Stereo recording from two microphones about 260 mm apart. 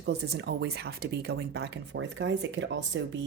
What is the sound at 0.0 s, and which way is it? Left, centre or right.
Speech, right.